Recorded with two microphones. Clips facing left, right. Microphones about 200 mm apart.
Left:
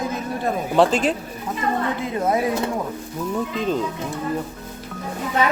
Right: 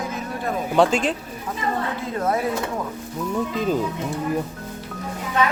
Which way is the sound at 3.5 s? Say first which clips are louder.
Right 1 dB; 5° right (ahead or behind).